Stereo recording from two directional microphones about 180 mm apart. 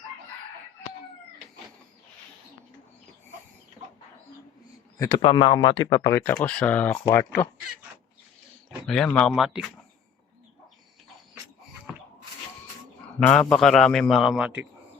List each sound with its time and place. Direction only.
4.9 s speech: 20° left (ahead or behind)
9.1 s a man's voice: centre (ahead or behind)
13.1 s a man's voice: 5° left (ahead or behind)